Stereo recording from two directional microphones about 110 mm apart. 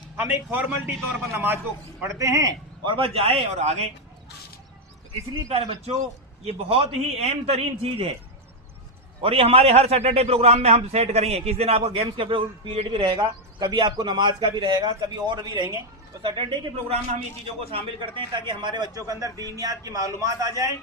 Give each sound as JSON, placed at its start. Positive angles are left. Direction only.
{"t": 0.2, "sound": "a man's voice", "side_deg": -15}
{"t": 2.8, "sound": "a man's voice", "side_deg": -50}
{"t": 5.5, "sound": "a man's voice", "side_deg": -70}
{"t": 9.2, "sound": "a man's voice", "side_deg": -60}
{"t": 17.7, "sound": "a man's voice", "side_deg": -55}